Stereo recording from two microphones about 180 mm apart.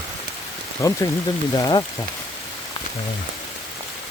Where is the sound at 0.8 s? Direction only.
15° left (ahead or behind).